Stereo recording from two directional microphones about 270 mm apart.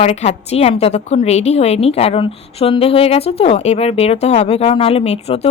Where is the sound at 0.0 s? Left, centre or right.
Left.